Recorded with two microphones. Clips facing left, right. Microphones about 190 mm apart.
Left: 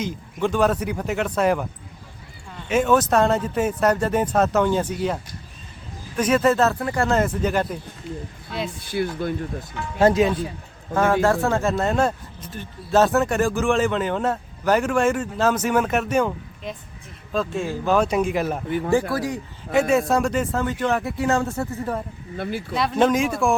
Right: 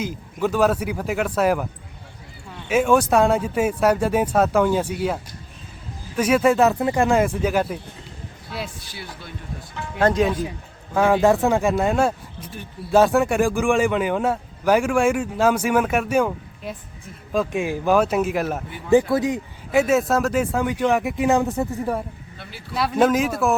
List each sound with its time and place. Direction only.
0.0 s speech: 5° right (ahead or behind)
8.8 s speech: 55° left (ahead or behind)
10.0 s speech: 5° left (ahead or behind)
11.0 s speech: 15° right (ahead or behind)
18.9 s speech: 20° right (ahead or behind)
19.7 s speech: 5° right (ahead or behind)
22.4 s speech: 50° left (ahead or behind)
22.7 s speech: 5° right (ahead or behind)